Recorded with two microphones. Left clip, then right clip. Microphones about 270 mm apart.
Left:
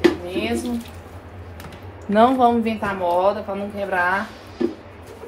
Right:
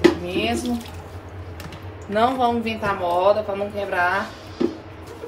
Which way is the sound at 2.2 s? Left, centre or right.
Left.